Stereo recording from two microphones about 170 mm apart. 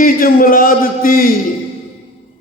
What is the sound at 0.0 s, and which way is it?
Speech, 55° left (ahead or behind).